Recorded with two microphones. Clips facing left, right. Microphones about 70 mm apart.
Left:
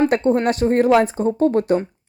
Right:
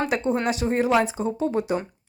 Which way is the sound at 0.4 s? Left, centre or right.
Left.